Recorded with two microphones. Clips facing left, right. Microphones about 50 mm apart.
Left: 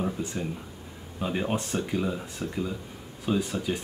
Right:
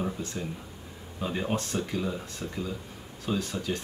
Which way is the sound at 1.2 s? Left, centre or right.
Centre.